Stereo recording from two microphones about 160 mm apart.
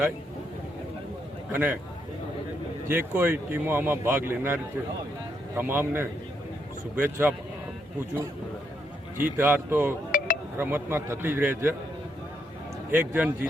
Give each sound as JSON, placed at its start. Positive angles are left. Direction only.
{"t": 1.5, "sound": "speech", "side_deg": -10}
{"t": 2.9, "sound": "speech", "side_deg": -15}
{"t": 9.2, "sound": "speech", "side_deg": -15}
{"t": 10.1, "sound": "a sound", "side_deg": 55}
{"t": 10.6, "sound": "speech", "side_deg": -15}
{"t": 12.9, "sound": "speech", "side_deg": -10}